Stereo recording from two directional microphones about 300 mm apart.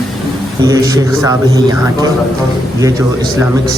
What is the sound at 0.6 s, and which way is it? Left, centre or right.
A man's voice, centre.